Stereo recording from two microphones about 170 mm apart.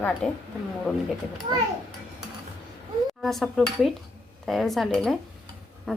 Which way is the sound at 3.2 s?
Centre (ahead or behind).